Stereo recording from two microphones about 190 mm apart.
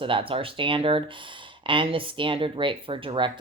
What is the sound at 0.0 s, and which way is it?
Speech, 25° right (ahead or behind).